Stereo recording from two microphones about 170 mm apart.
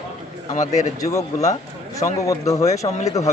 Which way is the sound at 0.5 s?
45° left (ahead or behind).